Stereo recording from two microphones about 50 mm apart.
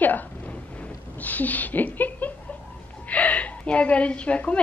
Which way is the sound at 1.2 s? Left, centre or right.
Left.